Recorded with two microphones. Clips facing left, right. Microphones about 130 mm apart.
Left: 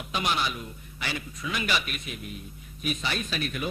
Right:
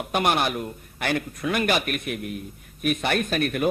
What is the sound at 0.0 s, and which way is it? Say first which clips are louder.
A man's voice: right 6 dB; 55° right (ahead or behind).